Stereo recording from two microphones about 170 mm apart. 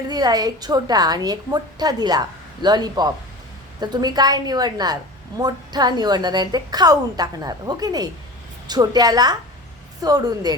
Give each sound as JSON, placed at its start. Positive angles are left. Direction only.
{"t": 0.1, "sound": "a woman's voice", "side_deg": -25}